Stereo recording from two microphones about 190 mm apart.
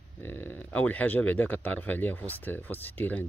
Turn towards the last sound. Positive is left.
turn(degrees=10)  # may be behind; listen again after turning